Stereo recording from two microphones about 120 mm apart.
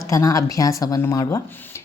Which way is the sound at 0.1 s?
30° left (ahead or behind).